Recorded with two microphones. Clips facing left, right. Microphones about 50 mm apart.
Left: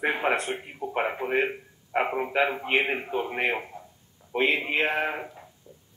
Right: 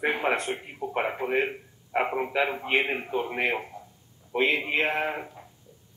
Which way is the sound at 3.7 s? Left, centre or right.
Left.